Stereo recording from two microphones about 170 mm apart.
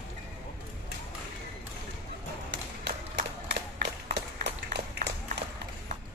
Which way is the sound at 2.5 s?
75° right (ahead or behind).